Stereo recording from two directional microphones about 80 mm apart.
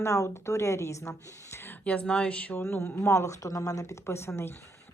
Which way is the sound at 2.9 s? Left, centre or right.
Left.